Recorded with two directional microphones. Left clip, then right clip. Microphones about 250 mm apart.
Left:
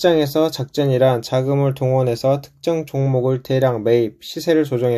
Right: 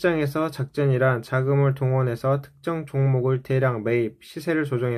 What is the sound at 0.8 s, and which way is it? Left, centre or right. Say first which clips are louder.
Speech: left 6 dB; centre.